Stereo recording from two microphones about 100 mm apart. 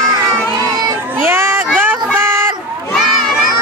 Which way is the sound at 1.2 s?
25° right (ahead or behind).